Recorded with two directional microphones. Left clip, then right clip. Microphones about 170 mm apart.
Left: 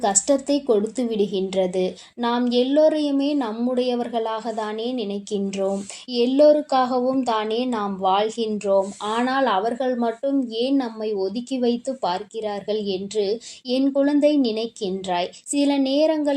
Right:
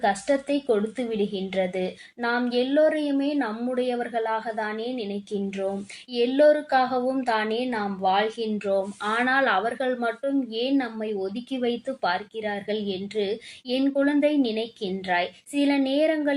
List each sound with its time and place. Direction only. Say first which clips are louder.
0.0 s speech: left 3 dB; 35° left (ahead or behind)
6.1 s speech: left 3 dB; 35° left (ahead or behind)